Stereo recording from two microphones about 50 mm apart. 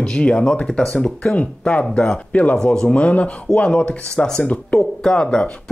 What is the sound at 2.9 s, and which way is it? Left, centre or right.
Speech, left.